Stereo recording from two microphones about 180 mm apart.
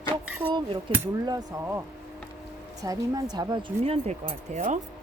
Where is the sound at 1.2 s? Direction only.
20° right (ahead or behind).